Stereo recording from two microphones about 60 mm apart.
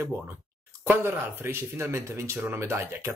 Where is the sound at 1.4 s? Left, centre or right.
Right.